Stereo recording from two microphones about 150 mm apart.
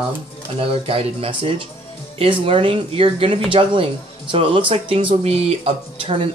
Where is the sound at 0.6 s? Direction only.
40° right (ahead or behind).